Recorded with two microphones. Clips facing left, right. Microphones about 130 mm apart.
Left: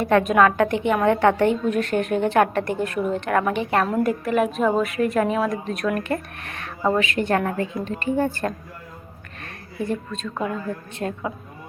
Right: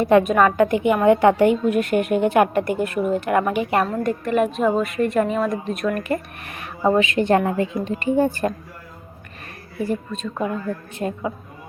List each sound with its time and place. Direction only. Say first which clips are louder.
0.0 s a woman's voice: right 4 dB; 15° right (ahead or behind)
0.3 s a woman's voice: right 1 dB; 5° right (ahead or behind)
3.8 s a woman's voice: left 1 dB; 5° left (ahead or behind)
6.8 s a woman's voice: right 4 dB; 20° right (ahead or behind)
9.7 s a woman's voice: right 2 dB; 5° right (ahead or behind)